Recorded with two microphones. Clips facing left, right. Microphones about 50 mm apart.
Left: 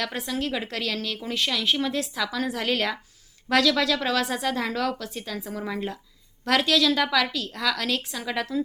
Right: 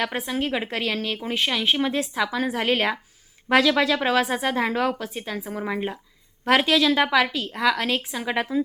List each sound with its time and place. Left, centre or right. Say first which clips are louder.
0.0 s a woman's voice: right 3 dB; right